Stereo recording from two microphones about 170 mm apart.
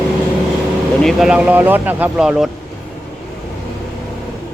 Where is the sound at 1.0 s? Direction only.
Centre (ahead or behind).